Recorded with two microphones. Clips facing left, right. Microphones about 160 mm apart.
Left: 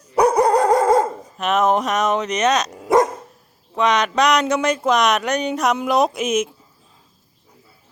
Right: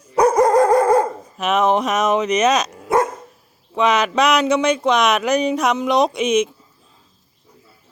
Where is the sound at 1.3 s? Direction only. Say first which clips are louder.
Right 1 dB; centre (ahead or behind).